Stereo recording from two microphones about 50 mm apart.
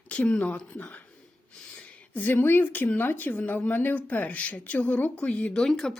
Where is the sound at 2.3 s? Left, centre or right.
Left.